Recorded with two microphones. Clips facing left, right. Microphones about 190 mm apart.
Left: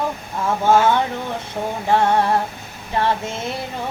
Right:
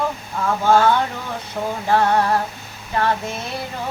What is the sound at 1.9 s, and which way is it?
Music, 25° left (ahead or behind).